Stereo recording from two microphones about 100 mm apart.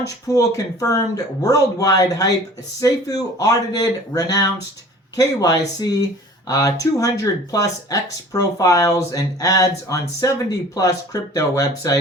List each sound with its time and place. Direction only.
0.0 s speech: 35° left (ahead or behind)